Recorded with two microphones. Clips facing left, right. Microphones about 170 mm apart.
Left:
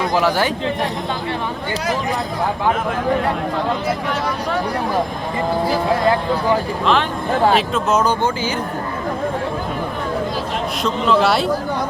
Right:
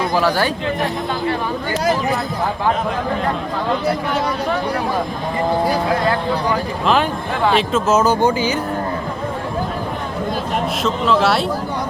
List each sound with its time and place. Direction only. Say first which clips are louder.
0.2 s speech: even; 15° left (ahead or behind)
7.5 s speech: right 1 dB; centre (ahead or behind)
10.8 s speech: left 1 dB; centre (ahead or behind)